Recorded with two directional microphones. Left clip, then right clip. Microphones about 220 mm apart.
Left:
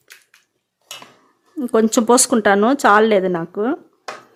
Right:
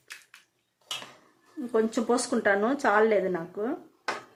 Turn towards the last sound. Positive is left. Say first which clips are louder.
# left 10 dB
turn(degrees=45)  # may be behind; listen again after turning